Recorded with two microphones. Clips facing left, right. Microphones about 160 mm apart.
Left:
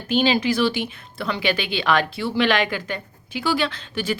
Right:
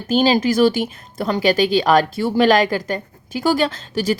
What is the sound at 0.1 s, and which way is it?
A woman's voice, 40° right (ahead or behind).